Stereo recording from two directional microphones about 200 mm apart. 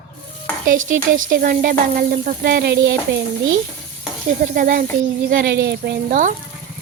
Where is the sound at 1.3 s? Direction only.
45° right (ahead or behind).